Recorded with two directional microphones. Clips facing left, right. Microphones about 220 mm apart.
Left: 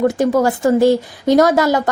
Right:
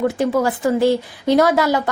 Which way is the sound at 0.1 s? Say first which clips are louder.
Left 3 dB; 45° left (ahead or behind).